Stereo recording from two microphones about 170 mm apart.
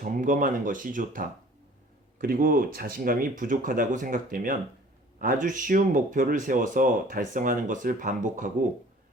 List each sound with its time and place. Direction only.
0.0 s speech: 50° right (ahead or behind)